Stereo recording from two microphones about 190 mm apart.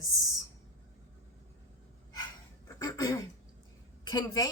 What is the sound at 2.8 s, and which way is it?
A woman's voice, 20° left (ahead or behind).